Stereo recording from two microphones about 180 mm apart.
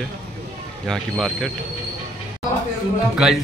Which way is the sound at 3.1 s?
5° right (ahead or behind).